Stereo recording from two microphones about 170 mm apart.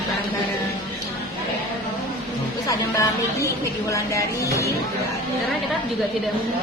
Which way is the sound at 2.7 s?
20° left (ahead or behind).